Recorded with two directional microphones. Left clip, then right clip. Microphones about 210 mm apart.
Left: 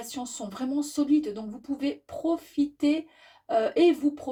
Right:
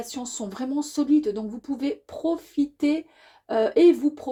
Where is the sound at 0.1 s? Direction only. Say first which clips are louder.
Right 2 dB; 35° right (ahead or behind).